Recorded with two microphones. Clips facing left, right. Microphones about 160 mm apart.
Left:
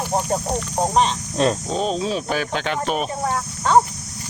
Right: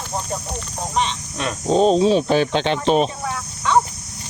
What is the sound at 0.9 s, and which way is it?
Speech, 40° left (ahead or behind).